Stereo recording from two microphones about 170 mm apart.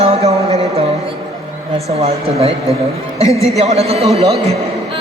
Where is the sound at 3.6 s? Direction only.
40° right (ahead or behind).